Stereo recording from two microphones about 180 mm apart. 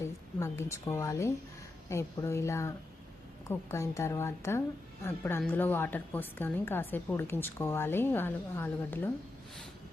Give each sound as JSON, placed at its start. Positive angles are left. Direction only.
{"t": 0.0, "sound": "a woman's voice", "side_deg": 15}